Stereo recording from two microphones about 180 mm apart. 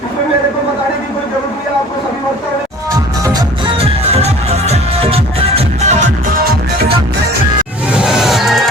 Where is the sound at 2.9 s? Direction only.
20° right (ahead or behind); by 6.9 s 55° right (ahead or behind).